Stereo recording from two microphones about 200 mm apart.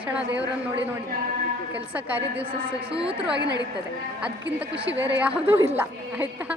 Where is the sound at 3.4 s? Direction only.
60° right (ahead or behind).